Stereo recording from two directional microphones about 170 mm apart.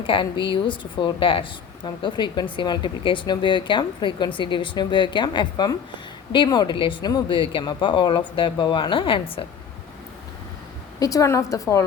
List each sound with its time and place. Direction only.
0.0 s speech: 30° left (ahead or behind)
11.0 s speech: 20° left (ahead or behind)